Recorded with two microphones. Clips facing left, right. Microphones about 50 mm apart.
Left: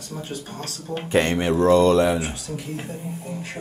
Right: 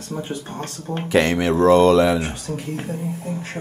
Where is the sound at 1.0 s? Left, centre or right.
Right.